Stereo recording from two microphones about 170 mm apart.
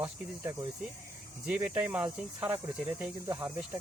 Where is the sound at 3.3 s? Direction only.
20° right (ahead or behind).